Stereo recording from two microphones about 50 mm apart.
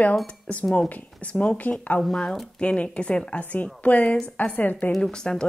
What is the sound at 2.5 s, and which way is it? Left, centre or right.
A woman's voice, left.